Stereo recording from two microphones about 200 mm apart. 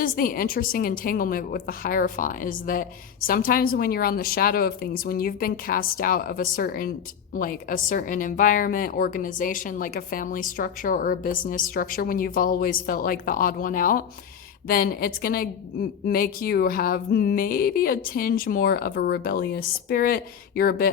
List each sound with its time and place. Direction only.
0.0 s a woman's voice: 45° left (ahead or behind)